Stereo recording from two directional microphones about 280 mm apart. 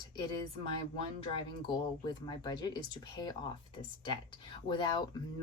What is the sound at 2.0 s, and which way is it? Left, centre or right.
A woman's voice, centre.